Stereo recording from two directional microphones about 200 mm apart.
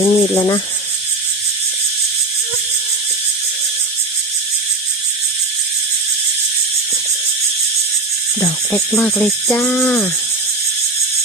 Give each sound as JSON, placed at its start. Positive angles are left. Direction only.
{"t": 0.0, "sound": "speech", "side_deg": 20}
{"t": 8.7, "sound": "speech", "side_deg": 5}